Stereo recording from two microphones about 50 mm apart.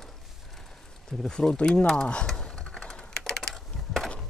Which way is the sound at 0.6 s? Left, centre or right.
Centre.